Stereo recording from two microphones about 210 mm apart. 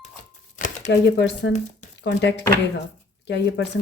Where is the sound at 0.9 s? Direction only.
55° left (ahead or behind).